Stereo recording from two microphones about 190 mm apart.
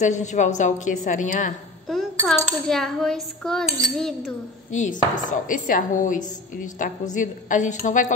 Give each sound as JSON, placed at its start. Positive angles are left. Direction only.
{"t": 0.0, "sound": "a woman's voice", "side_deg": 40}
{"t": 1.9, "sound": "a sound", "side_deg": 0}
{"t": 2.3, "sound": "coin", "side_deg": 0}
{"t": 4.6, "sound": "speech", "side_deg": 40}